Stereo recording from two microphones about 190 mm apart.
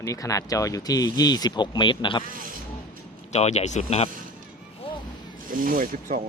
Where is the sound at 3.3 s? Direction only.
35° left (ahead or behind).